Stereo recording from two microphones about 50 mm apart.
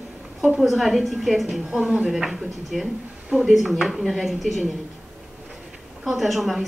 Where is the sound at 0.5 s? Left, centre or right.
Centre.